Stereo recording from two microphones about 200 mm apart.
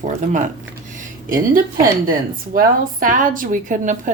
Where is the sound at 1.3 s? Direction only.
45° right (ahead or behind).